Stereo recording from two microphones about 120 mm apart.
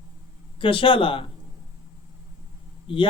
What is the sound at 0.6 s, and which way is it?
Speech, 45° left (ahead or behind).